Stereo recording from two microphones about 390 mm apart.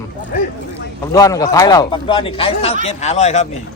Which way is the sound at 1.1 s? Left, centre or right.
Centre.